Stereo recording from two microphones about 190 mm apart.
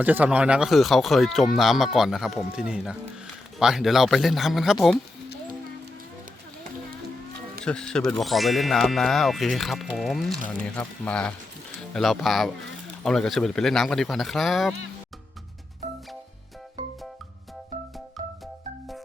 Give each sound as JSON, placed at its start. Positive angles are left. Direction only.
{"t": 0.0, "sound": "speech", "side_deg": -10}
{"t": 7.6, "sound": "speech", "side_deg": 5}
{"t": 18.2, "sound": "music", "side_deg": -35}